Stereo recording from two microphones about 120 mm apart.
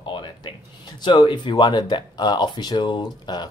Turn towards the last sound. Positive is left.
turn(degrees=35)  # may be behind; listen again after turning